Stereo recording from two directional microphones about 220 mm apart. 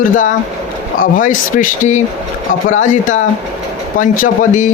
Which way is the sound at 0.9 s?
40° left (ahead or behind).